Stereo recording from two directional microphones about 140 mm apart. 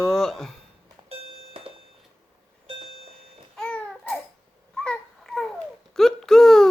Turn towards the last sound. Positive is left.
turn(degrees=0)  # may be behind; listen again after turning